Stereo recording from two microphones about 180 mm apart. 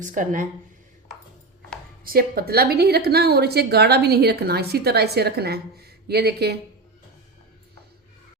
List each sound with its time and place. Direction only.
0.0 s speech: 45° right (ahead or behind)
2.0 s a woman's voice: 55° right (ahead or behind)